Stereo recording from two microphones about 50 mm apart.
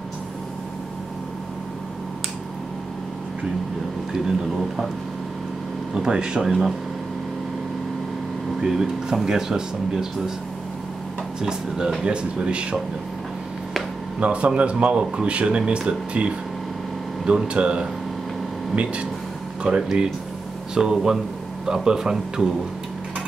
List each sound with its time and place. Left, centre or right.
4.1 s speech: centre
5.9 s speech: centre
8.5 s speech: centre
11.4 s speech: centre
14.2 s speech: right
19.7 s speech: centre